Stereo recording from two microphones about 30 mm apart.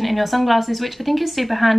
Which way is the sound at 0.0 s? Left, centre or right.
Centre.